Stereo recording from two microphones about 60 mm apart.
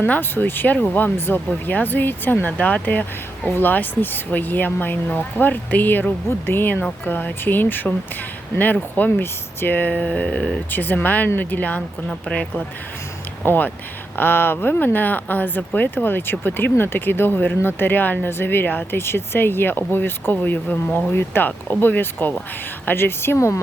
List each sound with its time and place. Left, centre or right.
0.0 s speech: left; by 10.6 s centre
10.7 s speech: left
13.4 s speech: left